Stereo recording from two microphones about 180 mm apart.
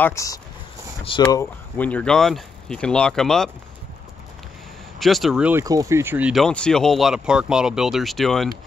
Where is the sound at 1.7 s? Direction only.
10° left (ahead or behind).